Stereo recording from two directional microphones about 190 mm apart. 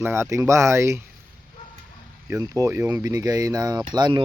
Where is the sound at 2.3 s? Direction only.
15° right (ahead or behind).